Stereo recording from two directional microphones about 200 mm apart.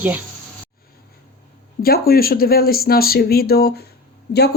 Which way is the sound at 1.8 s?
50° left (ahead or behind).